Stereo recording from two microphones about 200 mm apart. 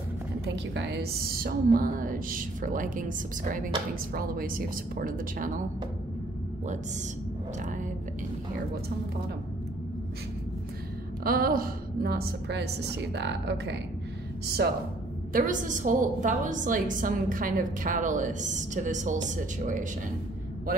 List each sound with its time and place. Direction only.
0.7 s a woman's voice: 55° right (ahead or behind)
11.2 s a woman's voice: 45° right (ahead or behind)
15.3 s a woman's voice: 40° right (ahead or behind)